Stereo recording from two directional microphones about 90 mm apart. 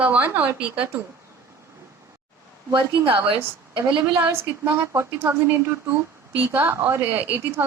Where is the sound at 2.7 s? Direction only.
65° right (ahead or behind).